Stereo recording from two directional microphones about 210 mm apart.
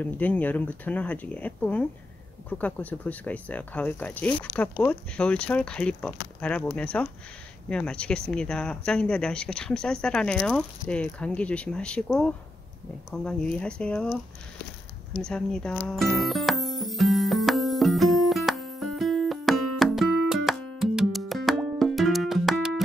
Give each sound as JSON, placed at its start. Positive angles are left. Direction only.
{"t": 0.0, "sound": "speech", "side_deg": 10}
{"t": 15.1, "sound": "music", "side_deg": 5}